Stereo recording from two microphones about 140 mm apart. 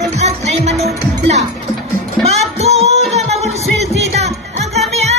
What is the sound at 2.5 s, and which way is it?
Music, 50° right (ahead or behind).